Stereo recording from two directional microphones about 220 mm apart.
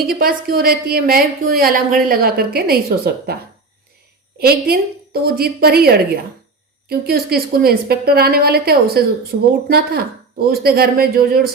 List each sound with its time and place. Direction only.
0.1 s a woman's voice: 45° right (ahead or behind)
4.4 s a woman's voice: 45° right (ahead or behind)